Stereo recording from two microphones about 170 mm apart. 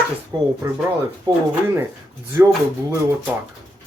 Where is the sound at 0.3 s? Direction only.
20° right (ahead or behind).